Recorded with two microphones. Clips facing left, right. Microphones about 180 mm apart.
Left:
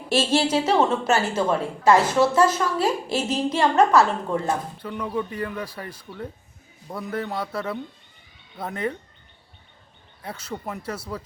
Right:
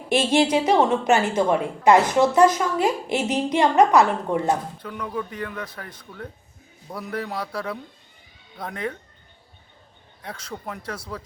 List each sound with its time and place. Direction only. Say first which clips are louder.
0.1 s a woman's voice: right 2 dB; 15° right (ahead or behind)
4.8 s a man's voice: left 2 dB; 5° left (ahead or behind)
10.2 s speech: left 2 dB; 5° left (ahead or behind)